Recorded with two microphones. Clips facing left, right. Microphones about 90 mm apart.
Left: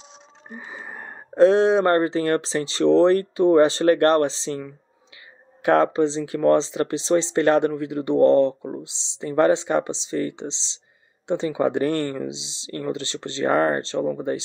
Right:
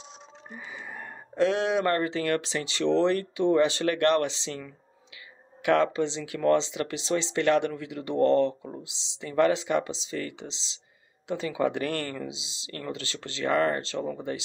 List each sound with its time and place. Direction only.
0.5 s speech: 35° left (ahead or behind)